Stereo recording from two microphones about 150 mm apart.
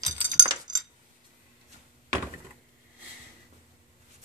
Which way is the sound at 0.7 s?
25° right (ahead or behind).